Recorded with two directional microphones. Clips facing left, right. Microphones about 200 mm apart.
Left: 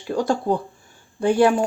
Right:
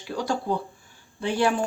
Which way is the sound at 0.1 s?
45° left (ahead or behind).